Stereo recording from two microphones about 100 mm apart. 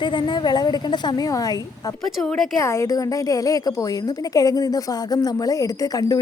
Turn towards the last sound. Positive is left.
turn(degrees=40)  # may be behind; listen again after turning